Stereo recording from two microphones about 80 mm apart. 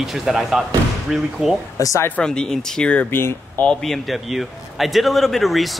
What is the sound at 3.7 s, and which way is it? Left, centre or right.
Speech, centre.